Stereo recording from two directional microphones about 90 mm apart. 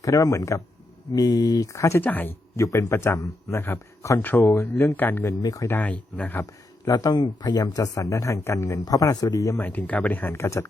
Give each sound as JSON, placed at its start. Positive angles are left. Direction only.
{"t": 0.0, "sound": "a man's voice", "side_deg": 40}
{"t": 2.0, "sound": "speech", "side_deg": 20}
{"t": 2.6, "sound": "a man's voice", "side_deg": 35}
{"t": 5.4, "sound": "speech", "side_deg": 45}
{"t": 5.6, "sound": "speech", "side_deg": 20}
{"t": 6.4, "sound": "a man's voice", "side_deg": 45}
{"t": 9.6, "sound": "speech", "side_deg": 20}
{"t": 10.3, "sound": "a man's voice", "side_deg": 30}